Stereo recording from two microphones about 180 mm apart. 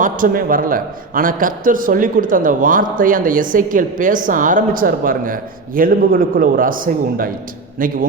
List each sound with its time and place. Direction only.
0.0 s a man's voice: 50° right (ahead or behind)